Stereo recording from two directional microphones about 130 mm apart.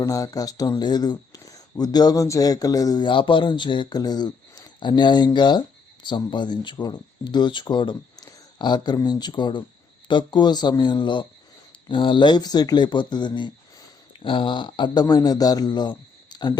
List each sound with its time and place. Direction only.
0.0 s speech: 25° left (ahead or behind)